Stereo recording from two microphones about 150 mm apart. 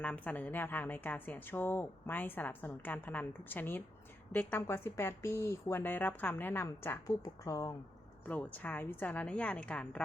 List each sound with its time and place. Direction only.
0.0 s a woman's voice: 10° left (ahead or behind)
8.3 s a woman's voice: 10° left (ahead or behind)